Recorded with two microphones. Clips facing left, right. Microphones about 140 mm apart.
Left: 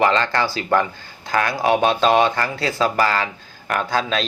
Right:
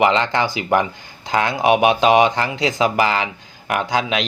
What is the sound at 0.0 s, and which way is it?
Speech, 20° right (ahead or behind).